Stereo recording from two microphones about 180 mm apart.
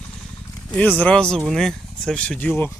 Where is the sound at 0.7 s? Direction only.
10° left (ahead or behind).